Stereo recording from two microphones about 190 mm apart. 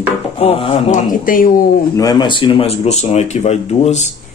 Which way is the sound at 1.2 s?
50° left (ahead or behind).